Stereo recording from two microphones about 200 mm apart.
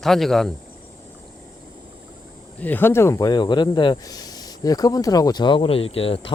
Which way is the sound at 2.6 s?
10° left (ahead or behind).